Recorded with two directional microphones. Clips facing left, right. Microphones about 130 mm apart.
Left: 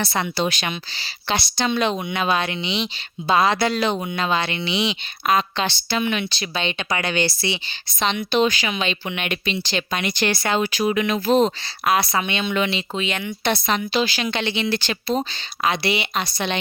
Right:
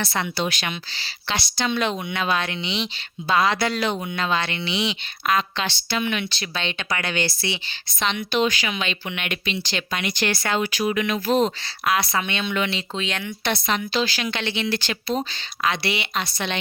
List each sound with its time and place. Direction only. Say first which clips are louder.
0.0 s speech: left 2 dB; 15° left (ahead or behind)
0.3 s speech: left 3 dB; 25° left (ahead or behind)
0.9 s speech: left 3 dB; 15° left (ahead or behind)
13.0 s speech: left 2 dB; 5° left (ahead or behind)
13.4 s a woman's voice: left 3 dB; 30° left (ahead or behind)
13.9 s speech: left 2 dB; 15° left (ahead or behind)
14.2 s speech: left 3 dB; 25° left (ahead or behind)
15.6 s speech: left 3 dB; 15° left (ahead or behind)